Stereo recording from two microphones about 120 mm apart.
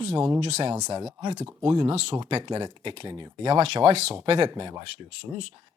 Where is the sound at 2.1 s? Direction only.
45° right (ahead or behind).